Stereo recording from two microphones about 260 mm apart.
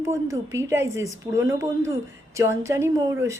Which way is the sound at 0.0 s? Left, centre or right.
Centre.